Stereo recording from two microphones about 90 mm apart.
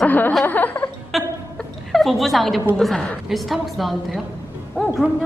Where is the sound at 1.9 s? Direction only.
Centre (ahead or behind).